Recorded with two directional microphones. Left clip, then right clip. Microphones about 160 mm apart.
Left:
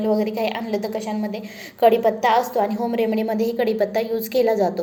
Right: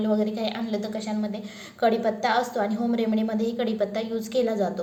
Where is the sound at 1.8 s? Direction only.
25° left (ahead or behind).